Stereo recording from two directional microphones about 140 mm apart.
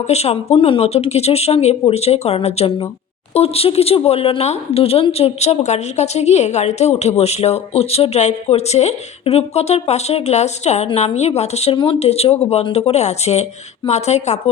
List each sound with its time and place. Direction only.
0.1 s speech: 50° left (ahead or behind)